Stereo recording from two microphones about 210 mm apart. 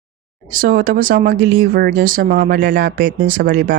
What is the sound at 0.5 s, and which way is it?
Speech, 45° right (ahead or behind).